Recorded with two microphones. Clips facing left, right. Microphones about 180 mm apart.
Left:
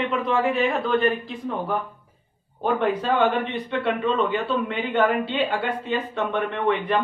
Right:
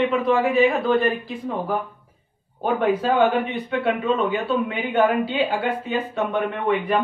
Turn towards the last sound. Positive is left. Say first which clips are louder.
# right 1 dB
turn(degrees=-5)  # may be behind; listen again after turning